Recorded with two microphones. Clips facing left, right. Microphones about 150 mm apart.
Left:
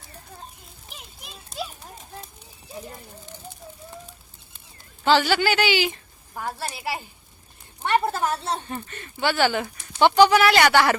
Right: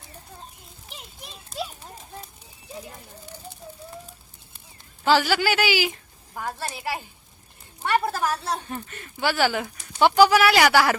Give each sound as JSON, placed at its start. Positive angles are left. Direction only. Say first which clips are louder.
{"t": 0.9, "sound": "children playing", "louder": "right 2 dB", "side_deg": 0}
{"t": 5.0, "sound": "a woman's voice", "louder": "left 1 dB", "side_deg": -5}
{"t": 6.4, "sound": "a woman's voice", "louder": "even", "side_deg": 10}
{"t": 8.5, "sound": "speech", "louder": "left 1 dB", "side_deg": -5}